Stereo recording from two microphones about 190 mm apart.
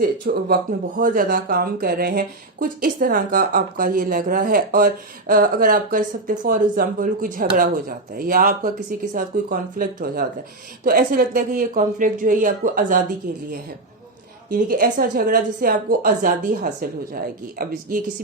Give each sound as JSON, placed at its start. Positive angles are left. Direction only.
{"t": 0.0, "sound": "speech", "side_deg": -55}
{"t": 14.5, "sound": "speech", "side_deg": -50}